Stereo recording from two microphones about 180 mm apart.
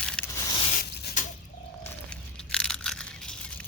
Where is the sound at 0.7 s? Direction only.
60° left (ahead or behind).